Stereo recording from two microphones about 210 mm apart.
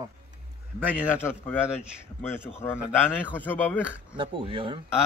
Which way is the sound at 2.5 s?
10° left (ahead or behind).